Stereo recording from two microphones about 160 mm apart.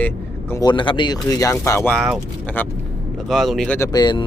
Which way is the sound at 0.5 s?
25° left (ahead or behind).